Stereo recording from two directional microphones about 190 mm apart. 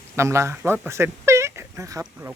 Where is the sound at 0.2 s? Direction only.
15° right (ahead or behind).